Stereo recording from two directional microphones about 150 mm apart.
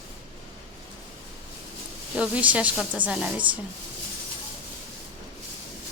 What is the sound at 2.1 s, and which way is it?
A woman's voice, 5° right (ahead or behind).